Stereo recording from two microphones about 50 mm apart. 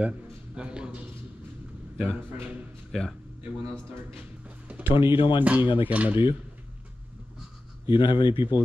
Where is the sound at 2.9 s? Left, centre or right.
Centre.